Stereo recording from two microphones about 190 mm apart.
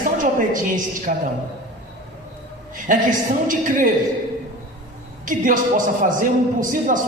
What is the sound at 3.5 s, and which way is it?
Speech, 45° right (ahead or behind).